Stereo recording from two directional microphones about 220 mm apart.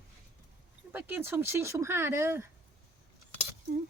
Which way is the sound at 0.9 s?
10° right (ahead or behind).